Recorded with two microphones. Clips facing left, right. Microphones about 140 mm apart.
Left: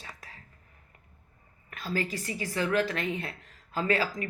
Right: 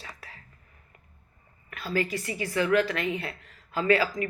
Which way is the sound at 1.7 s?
40° left (ahead or behind).